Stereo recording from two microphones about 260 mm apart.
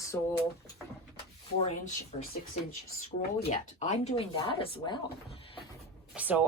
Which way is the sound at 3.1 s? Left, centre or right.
Left.